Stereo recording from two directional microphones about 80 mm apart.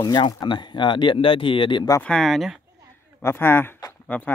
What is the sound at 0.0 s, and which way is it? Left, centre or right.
Speech, left.